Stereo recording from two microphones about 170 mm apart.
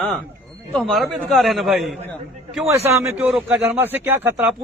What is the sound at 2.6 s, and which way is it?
A man's voice, 15° right (ahead or behind).